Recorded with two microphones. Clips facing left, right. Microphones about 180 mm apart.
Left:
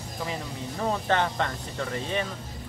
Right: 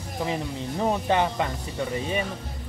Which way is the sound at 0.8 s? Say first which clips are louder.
Right 3 dB; 15° right (ahead or behind).